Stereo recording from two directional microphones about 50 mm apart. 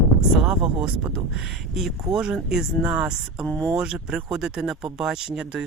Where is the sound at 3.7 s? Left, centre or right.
Centre.